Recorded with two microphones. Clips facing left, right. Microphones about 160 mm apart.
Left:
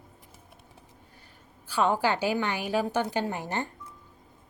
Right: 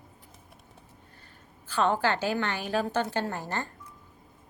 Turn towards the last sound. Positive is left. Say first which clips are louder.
# left 2 dB
turn(degrees=15)  # may be behind; listen again after turning